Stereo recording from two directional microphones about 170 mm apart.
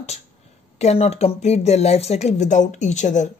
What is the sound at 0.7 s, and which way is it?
Speech, 40° left (ahead or behind).